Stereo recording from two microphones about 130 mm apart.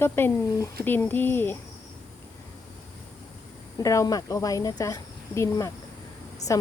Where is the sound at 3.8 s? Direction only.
25° left (ahead or behind).